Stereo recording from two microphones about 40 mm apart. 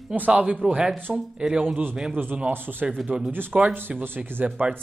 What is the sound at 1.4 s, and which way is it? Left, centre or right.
Speech, right.